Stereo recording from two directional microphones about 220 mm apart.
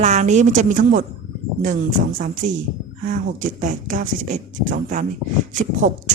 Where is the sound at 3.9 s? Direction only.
35° right (ahead or behind).